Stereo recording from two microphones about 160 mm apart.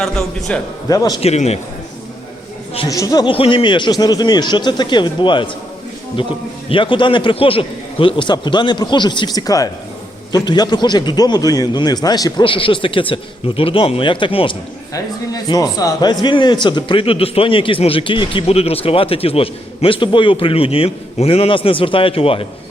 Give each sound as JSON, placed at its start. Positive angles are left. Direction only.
{"t": 0.0, "sound": "a man's voice", "side_deg": 0}
{"t": 0.9, "sound": "a man's voice", "side_deg": 25}
{"t": 1.2, "sound": "a man's voice", "side_deg": 40}
{"t": 2.9, "sound": "a man's voice", "side_deg": 20}
{"t": 3.3, "sound": "a man's voice", "side_deg": 35}